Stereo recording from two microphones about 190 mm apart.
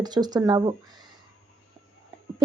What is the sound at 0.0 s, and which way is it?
Speech, 20° right (ahead or behind).